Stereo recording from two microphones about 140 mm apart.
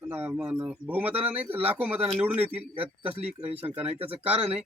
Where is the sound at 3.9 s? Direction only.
45° right (ahead or behind).